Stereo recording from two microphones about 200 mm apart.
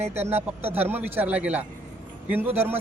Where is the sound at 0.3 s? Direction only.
10° right (ahead or behind).